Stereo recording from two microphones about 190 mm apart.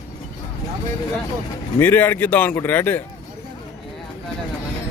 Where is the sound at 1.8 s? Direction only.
10° left (ahead or behind).